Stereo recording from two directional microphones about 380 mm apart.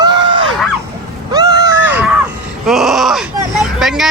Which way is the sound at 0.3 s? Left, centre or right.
Right.